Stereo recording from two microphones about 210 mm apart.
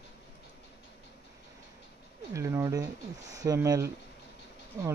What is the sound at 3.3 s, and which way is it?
Speech, 15° right (ahead or behind).